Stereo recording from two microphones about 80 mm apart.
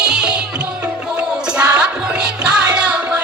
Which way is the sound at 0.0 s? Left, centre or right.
Centre.